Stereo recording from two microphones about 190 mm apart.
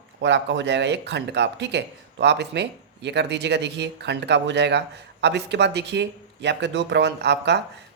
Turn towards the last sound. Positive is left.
turn(degrees=-65)  # may be behind; listen again after turning